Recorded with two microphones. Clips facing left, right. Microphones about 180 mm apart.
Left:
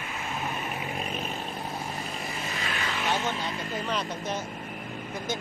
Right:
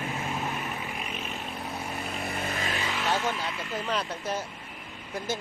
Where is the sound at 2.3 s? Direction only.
55° right (ahead or behind).